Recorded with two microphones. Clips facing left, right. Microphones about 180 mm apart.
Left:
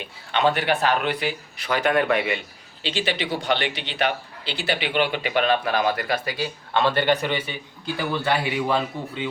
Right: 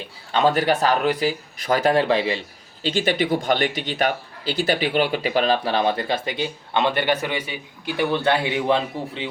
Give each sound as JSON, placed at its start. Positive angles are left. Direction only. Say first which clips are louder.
{"t": 0.0, "sound": "speech", "louder": "right 2 dB", "side_deg": -35}
{"t": 2.8, "sound": "speech", "louder": "right 5 dB", "side_deg": -45}
{"t": 8.1, "sound": "a man's voice", "louder": "right 2 dB", "side_deg": -25}